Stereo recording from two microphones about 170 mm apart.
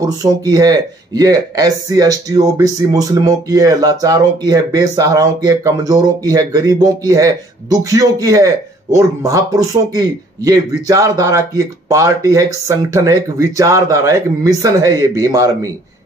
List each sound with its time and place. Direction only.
0.0 s speech: 20° right (ahead or behind)